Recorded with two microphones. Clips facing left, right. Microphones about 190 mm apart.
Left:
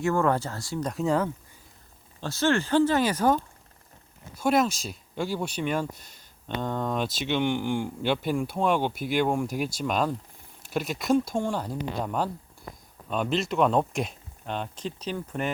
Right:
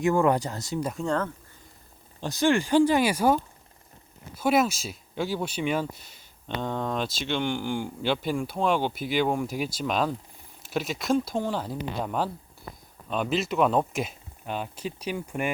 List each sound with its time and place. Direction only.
0.0 s speech: 15° right (ahead or behind)
0.9 s speech: 5° left (ahead or behind)
2.2 s speech: 15° right (ahead or behind)